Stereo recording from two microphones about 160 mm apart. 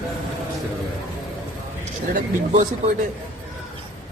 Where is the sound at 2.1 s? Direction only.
45° right (ahead or behind).